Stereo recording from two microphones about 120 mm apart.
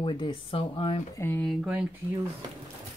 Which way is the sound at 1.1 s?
15° left (ahead or behind).